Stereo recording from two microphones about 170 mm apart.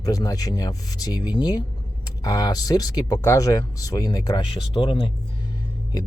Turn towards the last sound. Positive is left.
turn(degrees=20)  # may be behind; listen again after turning